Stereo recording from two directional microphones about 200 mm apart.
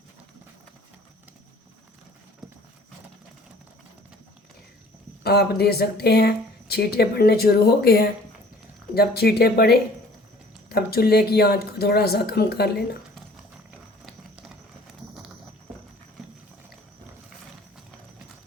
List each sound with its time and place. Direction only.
5.2 s speech: 50° left (ahead or behind)